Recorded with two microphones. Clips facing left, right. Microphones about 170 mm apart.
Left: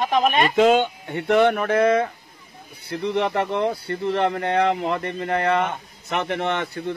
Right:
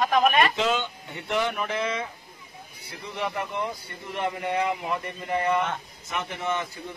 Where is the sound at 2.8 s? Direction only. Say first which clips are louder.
Left 10 dB; 70° left (ahead or behind).